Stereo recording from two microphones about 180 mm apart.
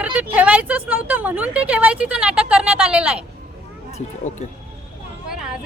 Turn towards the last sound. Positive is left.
turn(degrees=-5)  # may be behind; listen again after turning